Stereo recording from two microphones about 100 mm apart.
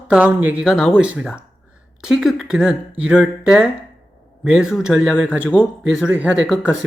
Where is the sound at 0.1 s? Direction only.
15° right (ahead or behind).